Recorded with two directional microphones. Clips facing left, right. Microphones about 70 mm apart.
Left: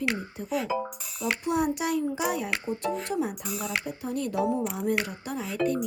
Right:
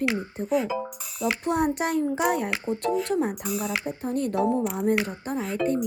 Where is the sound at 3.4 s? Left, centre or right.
Centre.